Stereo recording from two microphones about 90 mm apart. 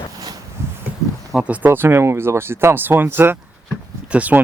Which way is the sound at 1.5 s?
20° right (ahead or behind).